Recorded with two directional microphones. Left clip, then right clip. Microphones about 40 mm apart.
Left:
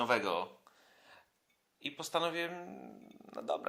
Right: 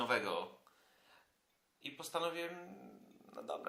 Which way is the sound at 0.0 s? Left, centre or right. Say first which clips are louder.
Left 4 dB; left.